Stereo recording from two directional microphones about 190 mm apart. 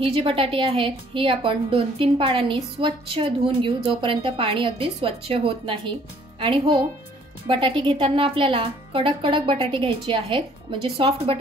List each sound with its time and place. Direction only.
0.0 s a woman's voice: 30° right (ahead or behind)